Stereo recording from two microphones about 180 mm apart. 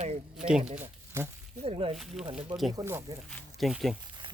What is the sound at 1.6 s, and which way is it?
Speech, 30° right (ahead or behind).